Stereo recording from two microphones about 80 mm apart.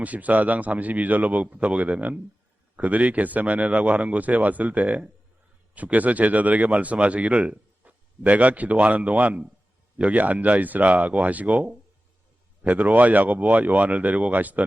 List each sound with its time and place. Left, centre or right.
0.0 s speech: centre